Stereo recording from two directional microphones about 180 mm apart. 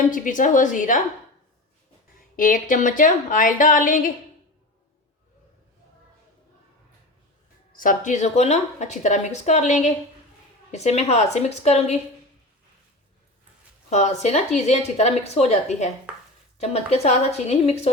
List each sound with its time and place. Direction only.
0.1 s a woman's voice: 45° left (ahead or behind)
2.3 s a woman's voice: 50° left (ahead or behind)
7.7 s a woman's voice: 50° left (ahead or behind)
13.9 s a woman's voice: 40° left (ahead or behind)